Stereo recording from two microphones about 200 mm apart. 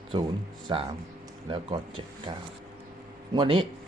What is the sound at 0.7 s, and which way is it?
Speech, 20° right (ahead or behind).